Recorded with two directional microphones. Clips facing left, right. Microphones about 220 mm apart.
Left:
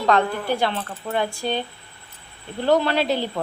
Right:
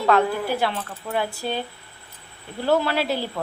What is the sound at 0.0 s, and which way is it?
A woman's voice, 5° right (ahead or behind).